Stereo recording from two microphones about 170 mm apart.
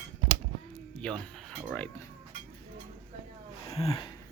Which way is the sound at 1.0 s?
5° left (ahead or behind).